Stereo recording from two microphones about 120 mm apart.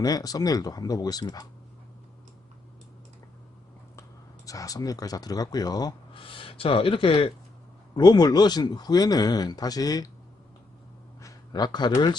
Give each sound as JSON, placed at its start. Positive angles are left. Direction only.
{"t": 0.0, "sound": "speech", "side_deg": 30}
{"t": 4.4, "sound": "speech", "side_deg": 30}
{"t": 6.2, "sound": "speech", "side_deg": 45}
{"t": 7.9, "sound": "speech", "side_deg": 35}
{"t": 11.2, "sound": "a sound", "side_deg": 30}